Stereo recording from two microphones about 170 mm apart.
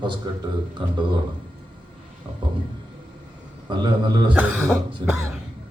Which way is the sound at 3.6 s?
25° right (ahead or behind).